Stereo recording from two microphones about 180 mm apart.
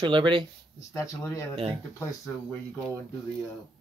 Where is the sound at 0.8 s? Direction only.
15° left (ahead or behind).